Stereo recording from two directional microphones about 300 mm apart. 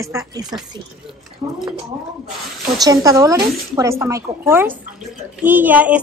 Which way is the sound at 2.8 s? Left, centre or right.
Centre.